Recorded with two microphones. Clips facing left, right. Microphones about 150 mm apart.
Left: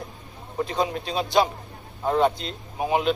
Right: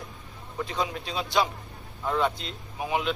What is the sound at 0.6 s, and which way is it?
A man's voice, 40° left (ahead or behind).